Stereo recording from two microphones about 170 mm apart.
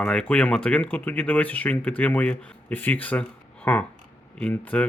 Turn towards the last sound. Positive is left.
turn(degrees=10)  # may be behind; listen again after turning